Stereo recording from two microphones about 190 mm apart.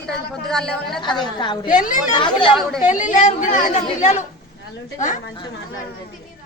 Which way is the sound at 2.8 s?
40° left (ahead or behind).